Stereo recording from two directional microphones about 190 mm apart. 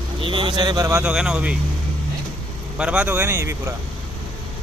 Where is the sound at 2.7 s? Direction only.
5° right (ahead or behind).